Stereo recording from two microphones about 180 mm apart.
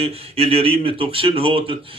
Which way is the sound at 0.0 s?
35° right (ahead or behind).